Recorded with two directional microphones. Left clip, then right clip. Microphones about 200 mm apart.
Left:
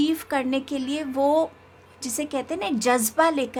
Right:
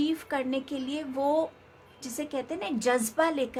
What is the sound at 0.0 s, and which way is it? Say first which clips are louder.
A woman's voice: left 5 dB; 30° left (ahead or behind).